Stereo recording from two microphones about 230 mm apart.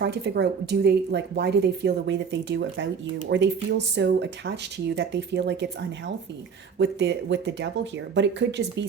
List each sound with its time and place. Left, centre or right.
0.0 s speech: right
6.7 s speech: right